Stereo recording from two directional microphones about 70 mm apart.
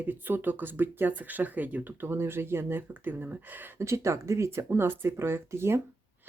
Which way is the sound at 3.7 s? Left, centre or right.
Right.